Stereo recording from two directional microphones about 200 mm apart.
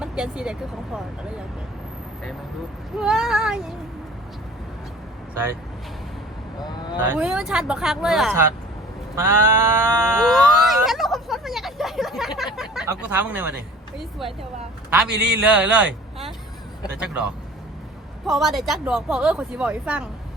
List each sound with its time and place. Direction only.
0.0 s speech: 5° right (ahead or behind)
3.0 s speech: 5° right (ahead or behind)
6.6 s speech: 20° left (ahead or behind)
7.1 s speech: 5° right (ahead or behind)
9.1 s sheep: 10° right (ahead or behind)
10.2 s a sound: centre (ahead or behind)
12.9 s sheep: 10° right (ahead or behind)
14.0 s a man's voice: centre (ahead or behind)